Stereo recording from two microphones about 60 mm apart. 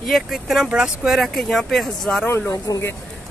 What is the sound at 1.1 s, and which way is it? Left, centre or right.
Speech, centre.